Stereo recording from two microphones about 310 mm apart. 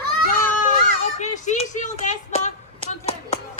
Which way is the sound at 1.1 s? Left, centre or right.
Left.